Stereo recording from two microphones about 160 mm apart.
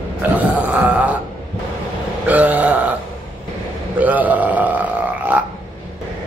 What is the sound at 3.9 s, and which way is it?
Burping, 10° right (ahead or behind).